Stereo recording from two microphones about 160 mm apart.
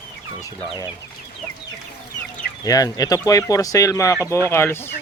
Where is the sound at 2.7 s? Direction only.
20° left (ahead or behind).